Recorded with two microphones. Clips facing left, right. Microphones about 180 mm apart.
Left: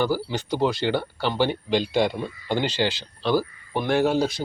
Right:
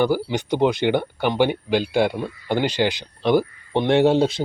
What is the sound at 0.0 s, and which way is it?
Speech, 15° right (ahead or behind).